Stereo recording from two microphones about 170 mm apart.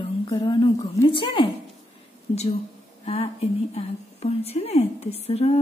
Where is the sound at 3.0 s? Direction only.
40° left (ahead or behind).